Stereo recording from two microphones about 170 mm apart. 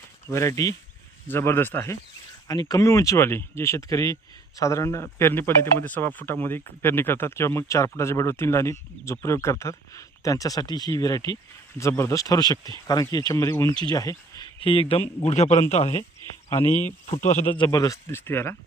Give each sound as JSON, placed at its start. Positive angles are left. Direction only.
{"t": 0.3, "sound": "speech", "side_deg": 15}
{"t": 16.6, "sound": "speech", "side_deg": 15}